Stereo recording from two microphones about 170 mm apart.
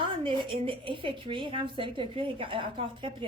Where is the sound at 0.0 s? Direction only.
30° right (ahead or behind).